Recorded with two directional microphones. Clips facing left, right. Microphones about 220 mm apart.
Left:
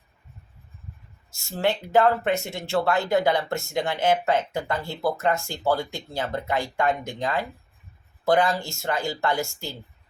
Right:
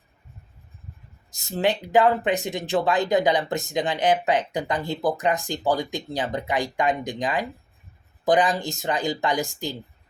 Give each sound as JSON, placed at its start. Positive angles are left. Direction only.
{"t": 1.4, "sound": "speech", "side_deg": -20}